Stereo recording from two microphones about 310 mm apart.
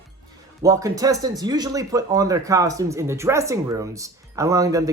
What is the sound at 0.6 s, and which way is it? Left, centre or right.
Speech, centre.